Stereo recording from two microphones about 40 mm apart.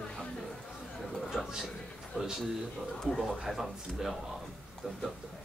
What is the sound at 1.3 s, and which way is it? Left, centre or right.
Speech, centre.